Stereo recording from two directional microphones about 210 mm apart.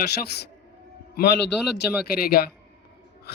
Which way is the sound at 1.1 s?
50° left (ahead or behind).